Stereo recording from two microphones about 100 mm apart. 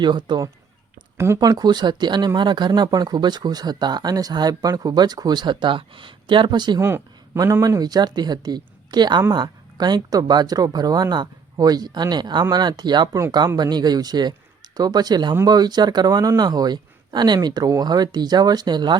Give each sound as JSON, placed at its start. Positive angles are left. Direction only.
{"t": 0.0, "sound": "speech", "side_deg": -50}
{"t": 1.1, "sound": "speech", "side_deg": -25}
{"t": 1.4, "sound": "speech", "side_deg": -40}
{"t": 6.7, "sound": "speech", "side_deg": -25}
{"t": 7.3, "sound": "a man's voice", "side_deg": -35}
{"t": 7.8, "sound": "speech", "side_deg": -45}